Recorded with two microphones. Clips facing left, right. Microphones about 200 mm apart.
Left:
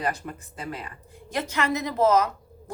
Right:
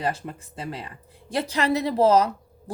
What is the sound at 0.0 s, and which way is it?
A woman's voice, 30° right (ahead or behind).